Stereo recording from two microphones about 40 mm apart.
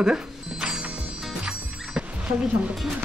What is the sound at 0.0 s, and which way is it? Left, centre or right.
Music, centre.